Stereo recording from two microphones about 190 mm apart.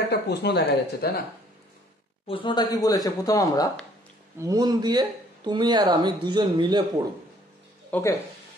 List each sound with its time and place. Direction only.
0.1 s speech: 60° left (ahead or behind)
2.2 s speech: 25° left (ahead or behind)
4.4 s speech: 20° right (ahead or behind)
7.9 s speech: 15° left (ahead or behind)